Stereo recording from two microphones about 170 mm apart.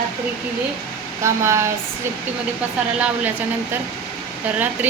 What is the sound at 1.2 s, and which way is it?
Speech, 15° right (ahead or behind).